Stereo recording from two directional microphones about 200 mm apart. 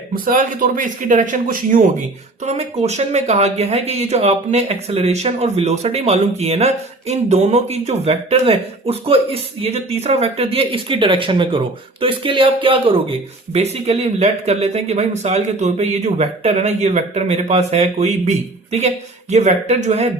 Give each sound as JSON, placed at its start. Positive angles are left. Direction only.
{"t": 0.3, "sound": "speech", "side_deg": -40}